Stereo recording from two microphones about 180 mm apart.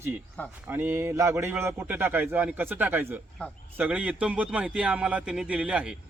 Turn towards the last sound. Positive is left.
turn(degrees=-5)  # may be behind; listen again after turning